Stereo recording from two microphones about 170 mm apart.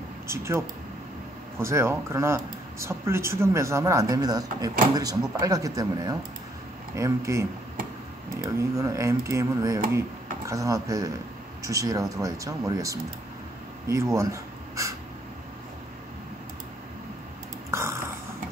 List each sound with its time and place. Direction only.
0.3 s speech: 15° right (ahead or behind)
13.8 s crow: 15° right (ahead or behind)
17.6 s a sound: 15° right (ahead or behind)